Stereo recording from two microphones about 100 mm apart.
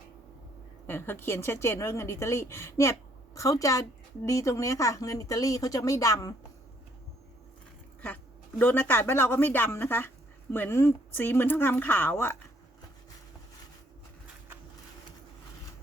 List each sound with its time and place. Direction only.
0.9 s a woman's voice: 20° left (ahead or behind)
8.0 s a woman's voice: 15° left (ahead or behind)